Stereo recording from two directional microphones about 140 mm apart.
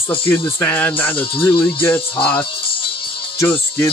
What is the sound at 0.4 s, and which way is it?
Speech, 15° left (ahead or behind).